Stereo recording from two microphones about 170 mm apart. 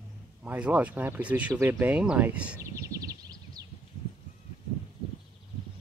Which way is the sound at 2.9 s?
20° right (ahead or behind).